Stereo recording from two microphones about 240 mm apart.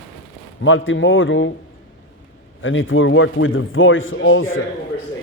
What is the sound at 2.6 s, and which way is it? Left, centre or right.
Speech, left.